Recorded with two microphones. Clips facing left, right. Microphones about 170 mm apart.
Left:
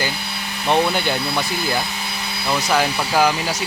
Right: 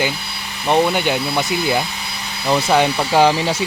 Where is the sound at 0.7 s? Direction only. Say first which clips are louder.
Right 3 dB; 15° right (ahead or behind).